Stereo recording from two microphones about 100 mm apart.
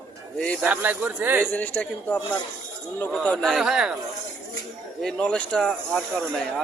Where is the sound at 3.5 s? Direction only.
5° right (ahead or behind).